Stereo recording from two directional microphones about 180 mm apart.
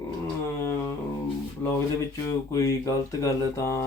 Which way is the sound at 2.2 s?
20° left (ahead or behind).